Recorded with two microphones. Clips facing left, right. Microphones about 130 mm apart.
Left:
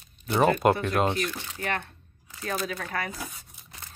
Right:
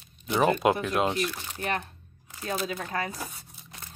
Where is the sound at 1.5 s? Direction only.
20° right (ahead or behind).